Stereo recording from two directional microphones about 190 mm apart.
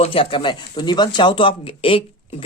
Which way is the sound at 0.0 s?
30° left (ahead or behind).